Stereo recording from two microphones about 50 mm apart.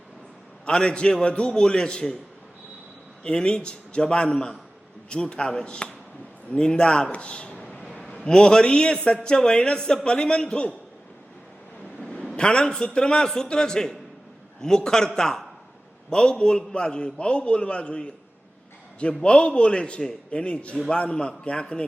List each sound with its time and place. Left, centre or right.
0.6 s a man's voice: centre
3.2 s a man's voice: centre
12.1 s a man's voice: centre
19.2 s a man's voice: centre